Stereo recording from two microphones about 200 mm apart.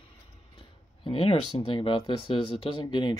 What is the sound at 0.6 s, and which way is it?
Speech, 25° left (ahead or behind).